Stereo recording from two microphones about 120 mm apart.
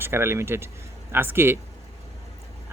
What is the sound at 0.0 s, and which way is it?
A man's voice, 20° right (ahead or behind).